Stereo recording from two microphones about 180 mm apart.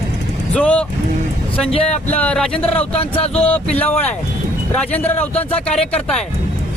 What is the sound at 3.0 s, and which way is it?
Speech, 30° left (ahead or behind).